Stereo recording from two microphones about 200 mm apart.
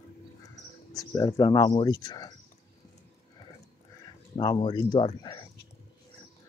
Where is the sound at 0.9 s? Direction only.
15° left (ahead or behind).